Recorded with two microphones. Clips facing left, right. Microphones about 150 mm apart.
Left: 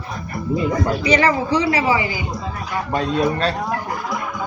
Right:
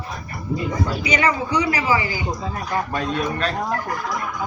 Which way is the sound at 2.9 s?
30° left (ahead or behind).